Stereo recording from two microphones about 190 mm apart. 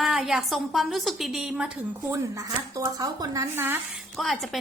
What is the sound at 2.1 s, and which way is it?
A woman's voice, 15° right (ahead or behind).